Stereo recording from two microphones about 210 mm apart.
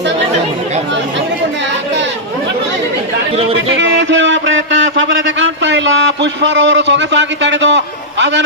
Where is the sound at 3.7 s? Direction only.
60° right (ahead or behind).